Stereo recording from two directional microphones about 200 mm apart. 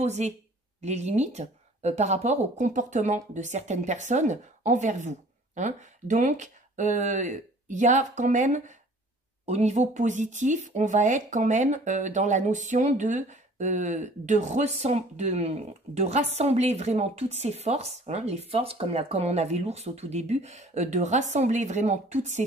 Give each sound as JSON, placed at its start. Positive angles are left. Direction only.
{"t": 0.0, "sound": "speech", "side_deg": -35}